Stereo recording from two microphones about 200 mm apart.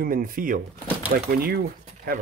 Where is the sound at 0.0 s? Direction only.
45° right (ahead or behind).